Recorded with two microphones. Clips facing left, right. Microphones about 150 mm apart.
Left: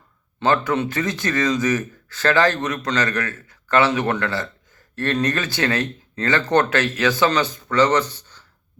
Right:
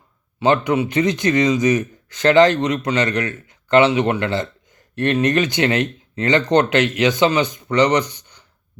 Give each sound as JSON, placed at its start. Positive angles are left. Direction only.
{"t": 0.3, "sound": "speech", "side_deg": -20}